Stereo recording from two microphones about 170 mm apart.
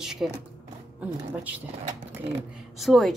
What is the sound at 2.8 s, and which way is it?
Speech, centre (ahead or behind).